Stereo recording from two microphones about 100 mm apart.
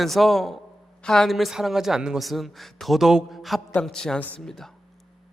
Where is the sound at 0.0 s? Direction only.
Centre (ahead or behind).